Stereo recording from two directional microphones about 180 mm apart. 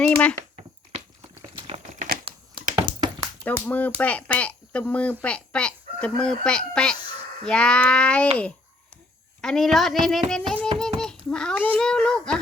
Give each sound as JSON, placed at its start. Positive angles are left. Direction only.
{"t": 0.0, "sound": "speech", "side_deg": 5}
{"t": 1.5, "sound": "crumpling", "side_deg": -35}
{"t": 2.3, "sound": "computer keyboard", "side_deg": -30}
{"t": 2.7, "sound": "a sound", "side_deg": -25}
{"t": 3.7, "sound": "a child's voice", "side_deg": 10}
{"t": 9.4, "sound": "a child's voice", "side_deg": 5}
{"t": 10.8, "sound": "child singing", "side_deg": 5}
{"t": 11.8, "sound": "a child's voice", "side_deg": 5}